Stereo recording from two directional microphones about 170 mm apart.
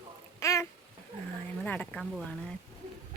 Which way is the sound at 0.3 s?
15° left (ahead or behind).